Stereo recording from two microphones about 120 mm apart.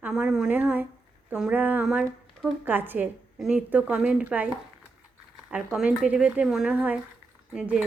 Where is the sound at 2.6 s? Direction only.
15° right (ahead or behind).